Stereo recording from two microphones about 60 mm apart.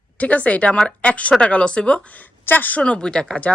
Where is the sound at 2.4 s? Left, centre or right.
Left.